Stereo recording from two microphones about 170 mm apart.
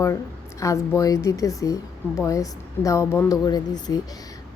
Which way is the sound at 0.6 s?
20° left (ahead or behind).